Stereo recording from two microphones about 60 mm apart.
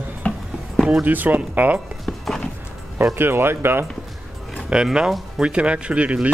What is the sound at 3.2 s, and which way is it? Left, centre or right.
Speech, right.